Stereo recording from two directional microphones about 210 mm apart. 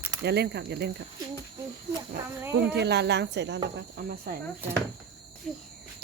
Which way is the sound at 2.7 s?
55° right (ahead or behind).